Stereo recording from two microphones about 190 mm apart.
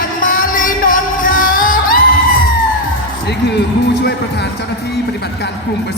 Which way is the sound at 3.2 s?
60° left (ahead or behind).